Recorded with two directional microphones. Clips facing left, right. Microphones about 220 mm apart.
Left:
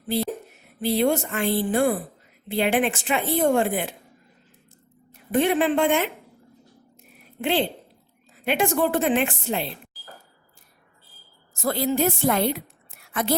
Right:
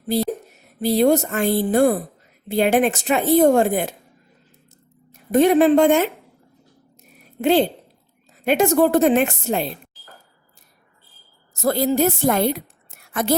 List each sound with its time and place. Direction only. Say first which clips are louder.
0.8 s speech: right 5 dB; 40° right (ahead or behind)
5.3 s speech: right 7 dB; 40° right (ahead or behind)
7.0 s a sound: right 7 dB; 40° right (ahead or behind)
8.4 s speech: right 6 dB; 40° right (ahead or behind)
11.5 s a woman's voice: right 5 dB; 40° right (ahead or behind)